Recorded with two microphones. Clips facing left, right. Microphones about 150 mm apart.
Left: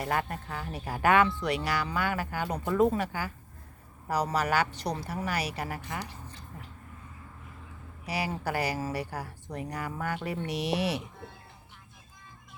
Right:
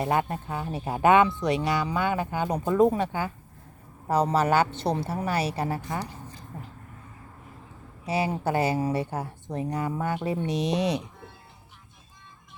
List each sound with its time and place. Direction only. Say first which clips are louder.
0.0 s speech: right 5 dB; 25° right (ahead or behind)
8.0 s speech: right 6 dB; 25° right (ahead or behind)